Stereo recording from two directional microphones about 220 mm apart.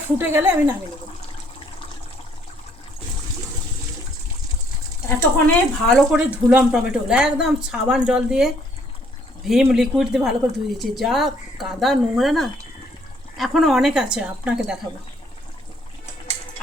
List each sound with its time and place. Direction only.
0.2 s speech: 10° right (ahead or behind)
5.0 s speech: 5° left (ahead or behind)